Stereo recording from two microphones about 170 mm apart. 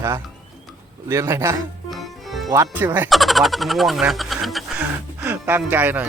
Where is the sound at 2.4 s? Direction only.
20° right (ahead or behind).